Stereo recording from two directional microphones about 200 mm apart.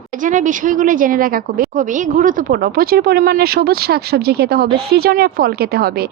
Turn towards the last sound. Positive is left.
turn(degrees=-50)  # may be behind; listen again after turning